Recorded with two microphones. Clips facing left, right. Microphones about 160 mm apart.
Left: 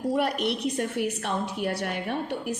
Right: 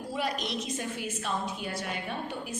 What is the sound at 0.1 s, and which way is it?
A woman's voice, 65° left (ahead or behind).